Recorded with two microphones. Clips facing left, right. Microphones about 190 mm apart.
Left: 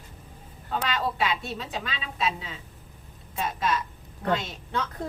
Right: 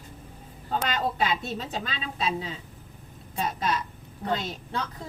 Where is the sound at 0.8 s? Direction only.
40° right (ahead or behind).